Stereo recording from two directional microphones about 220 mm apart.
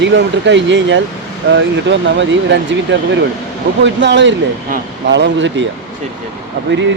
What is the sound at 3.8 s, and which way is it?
Speech, 55° right (ahead or behind).